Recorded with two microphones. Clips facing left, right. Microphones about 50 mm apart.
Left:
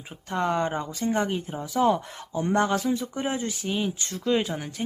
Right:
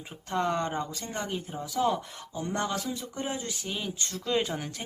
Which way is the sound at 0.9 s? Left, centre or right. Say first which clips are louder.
Left 8 dB; left.